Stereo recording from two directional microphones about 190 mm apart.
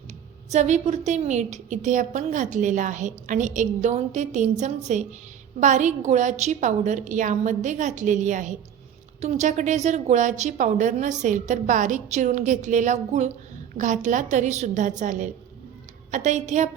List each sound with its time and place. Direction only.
0.1 s a woman's voice: 35° right (ahead or behind)